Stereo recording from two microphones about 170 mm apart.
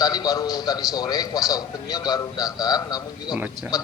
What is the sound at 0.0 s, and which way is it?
A man's voice, 20° left (ahead or behind).